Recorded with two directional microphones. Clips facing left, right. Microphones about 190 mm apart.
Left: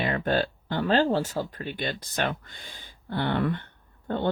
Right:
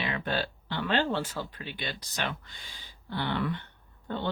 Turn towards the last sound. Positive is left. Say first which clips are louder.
# left 6 dB
turn(degrees=50)  # may be behind; listen again after turning